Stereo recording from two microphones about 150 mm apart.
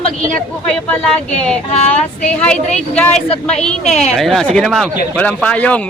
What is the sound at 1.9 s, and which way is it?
A man's voice, 5° left (ahead or behind).